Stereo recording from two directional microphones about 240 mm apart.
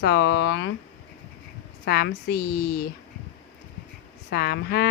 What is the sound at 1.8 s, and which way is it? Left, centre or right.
Speech, left.